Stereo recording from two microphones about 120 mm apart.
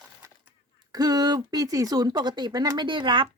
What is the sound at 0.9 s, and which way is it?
Speech, 35° right (ahead or behind).